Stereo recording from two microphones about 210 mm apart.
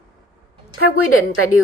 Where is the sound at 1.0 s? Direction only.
90° left.